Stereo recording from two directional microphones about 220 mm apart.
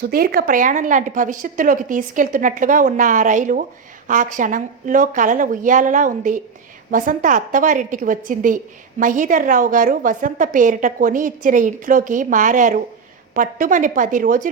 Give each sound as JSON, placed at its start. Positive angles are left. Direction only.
{"t": 0.0, "sound": "a woman's voice", "side_deg": -45}